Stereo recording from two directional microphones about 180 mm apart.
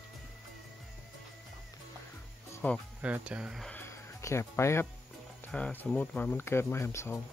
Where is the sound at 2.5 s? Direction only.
15° left (ahead or behind).